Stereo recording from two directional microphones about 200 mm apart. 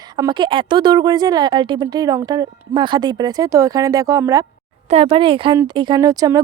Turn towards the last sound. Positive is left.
turn(degrees=-20)  # may be behind; listen again after turning